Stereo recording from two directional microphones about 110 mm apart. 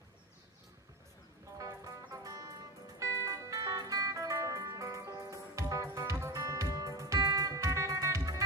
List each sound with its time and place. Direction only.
1.5 s music: 30° right (ahead or behind)